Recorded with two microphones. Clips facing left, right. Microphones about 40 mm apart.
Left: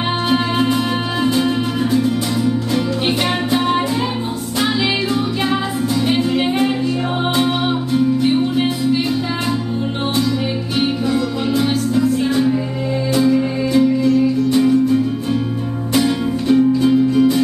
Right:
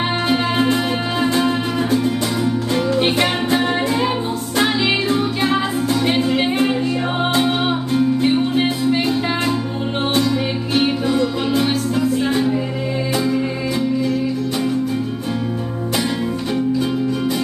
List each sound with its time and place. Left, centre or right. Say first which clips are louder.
11.1 s music: even; right
13.1 s music: left 6 dB; centre
15.9 s music: left 5 dB; centre